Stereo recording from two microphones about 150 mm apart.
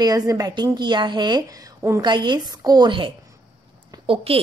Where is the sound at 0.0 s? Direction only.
25° right (ahead or behind).